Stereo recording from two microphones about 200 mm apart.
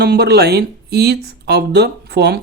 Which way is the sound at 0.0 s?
55° right (ahead or behind).